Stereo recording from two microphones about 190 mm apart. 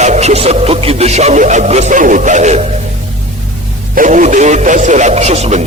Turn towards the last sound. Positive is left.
turn(degrees=-35)  # may be behind; listen again after turning